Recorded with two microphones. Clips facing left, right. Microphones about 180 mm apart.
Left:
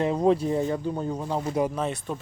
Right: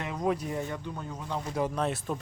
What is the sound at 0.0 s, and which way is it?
Speech, 30° left (ahead or behind).